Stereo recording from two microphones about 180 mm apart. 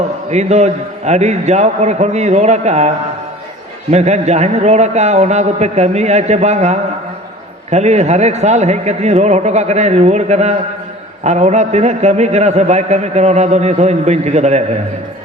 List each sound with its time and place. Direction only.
0.3 s a man's voice: 40° right (ahead or behind)
3.9 s a man's voice: 40° right (ahead or behind)